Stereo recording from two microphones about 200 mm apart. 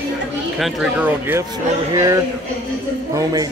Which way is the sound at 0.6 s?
5° right (ahead or behind).